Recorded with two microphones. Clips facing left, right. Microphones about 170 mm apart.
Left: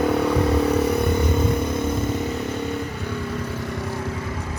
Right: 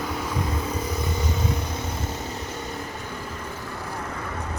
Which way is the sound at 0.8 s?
65° left (ahead or behind).